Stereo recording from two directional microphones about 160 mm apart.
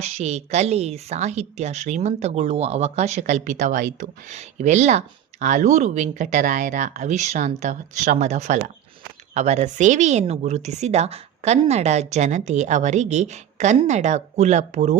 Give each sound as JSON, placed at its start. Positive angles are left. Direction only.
{"t": 0.0, "sound": "a woman's voice", "side_deg": -45}